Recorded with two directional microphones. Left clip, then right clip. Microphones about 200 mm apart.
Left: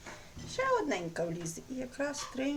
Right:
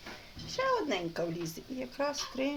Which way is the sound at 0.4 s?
10° right (ahead or behind).